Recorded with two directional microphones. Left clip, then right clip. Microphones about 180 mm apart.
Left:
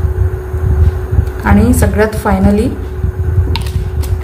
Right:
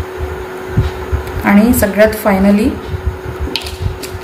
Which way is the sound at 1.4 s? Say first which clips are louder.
Right 1 dB; 60° left (ahead or behind).